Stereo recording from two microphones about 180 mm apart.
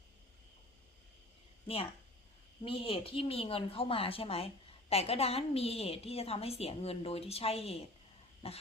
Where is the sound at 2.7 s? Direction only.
30° left (ahead or behind).